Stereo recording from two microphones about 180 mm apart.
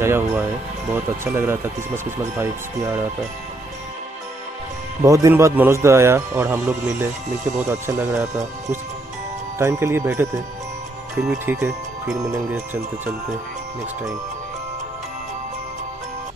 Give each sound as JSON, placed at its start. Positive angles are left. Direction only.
{"t": 0.0, "sound": "a man's voice", "side_deg": -15}
{"t": 5.0, "sound": "a man's voice", "side_deg": -20}
{"t": 9.6, "sound": "a man's voice", "side_deg": -15}